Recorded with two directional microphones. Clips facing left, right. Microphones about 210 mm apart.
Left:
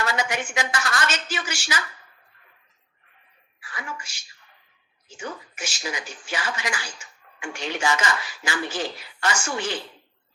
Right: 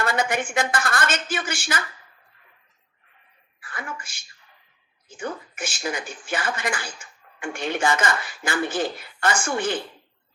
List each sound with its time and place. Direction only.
0.0 s a woman's voice: 55° right (ahead or behind)
3.6 s a woman's voice: 55° right (ahead or behind)